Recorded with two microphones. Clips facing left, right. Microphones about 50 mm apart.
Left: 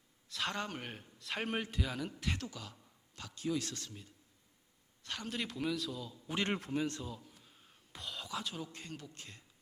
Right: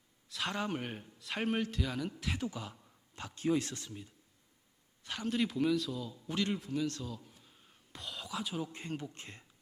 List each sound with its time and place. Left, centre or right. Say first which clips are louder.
0.3 s speech: right 2 dB; centre
2.4 s speech: right 6 dB; right
3.2 s speech: right 5 dB; right
3.8 s speech: right 3 dB; centre
6.7 s a man's voice: right 1 dB; left
7.4 s whispering: even; centre
8.9 s speech: right 7 dB; right